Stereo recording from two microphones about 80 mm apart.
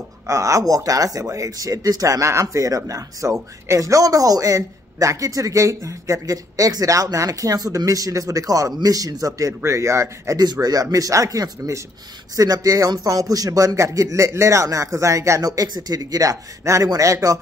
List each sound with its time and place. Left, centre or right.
0.3 s speech: right
9.5 s speech: right
10.4 s speech: right
15.4 s speech: right